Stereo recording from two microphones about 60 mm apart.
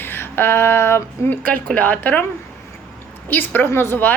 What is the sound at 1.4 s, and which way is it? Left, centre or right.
Speech, left.